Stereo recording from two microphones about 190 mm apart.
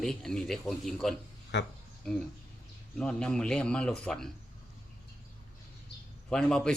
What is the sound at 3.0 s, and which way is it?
Speech, 5° left (ahead or behind).